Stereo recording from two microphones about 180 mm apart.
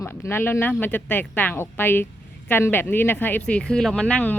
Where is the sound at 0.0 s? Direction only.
15° left (ahead or behind).